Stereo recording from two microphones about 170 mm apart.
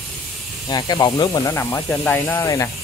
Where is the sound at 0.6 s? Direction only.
25° left (ahead or behind).